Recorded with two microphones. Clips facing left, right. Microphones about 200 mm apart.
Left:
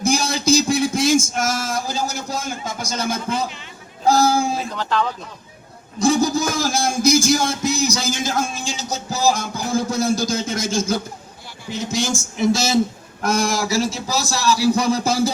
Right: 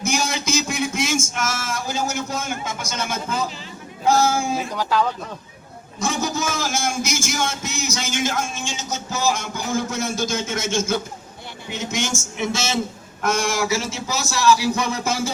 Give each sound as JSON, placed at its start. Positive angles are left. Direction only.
{"t": 0.0, "sound": "speech", "side_deg": 35}
{"t": 4.7, "sound": "speech", "side_deg": -10}
{"t": 6.0, "sound": "a man's voice", "side_deg": 35}